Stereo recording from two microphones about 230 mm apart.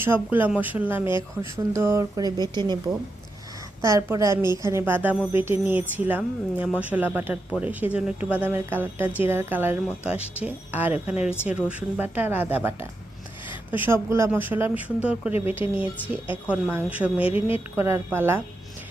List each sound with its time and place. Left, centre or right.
0.0 s speech: centre
3.8 s speech: centre
15.4 s a woman's voice: left
16.5 s speech: centre